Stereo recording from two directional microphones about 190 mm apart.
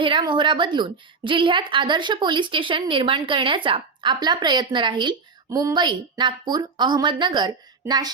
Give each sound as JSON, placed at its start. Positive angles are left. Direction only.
{"t": 0.0, "sound": "a woman's voice", "side_deg": -25}